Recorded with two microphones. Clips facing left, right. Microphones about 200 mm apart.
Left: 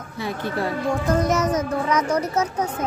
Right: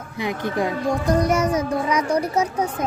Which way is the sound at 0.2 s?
15° right (ahead or behind).